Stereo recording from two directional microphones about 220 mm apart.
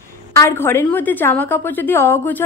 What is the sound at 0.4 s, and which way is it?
A woman's voice, 10° left (ahead or behind).